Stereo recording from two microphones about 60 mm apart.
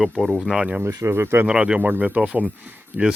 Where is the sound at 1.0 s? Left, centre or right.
Right.